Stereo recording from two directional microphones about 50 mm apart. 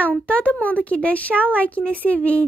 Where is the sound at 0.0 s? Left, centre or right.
Left.